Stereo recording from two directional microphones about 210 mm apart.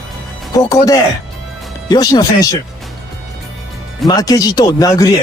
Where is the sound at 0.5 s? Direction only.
15° left (ahead or behind).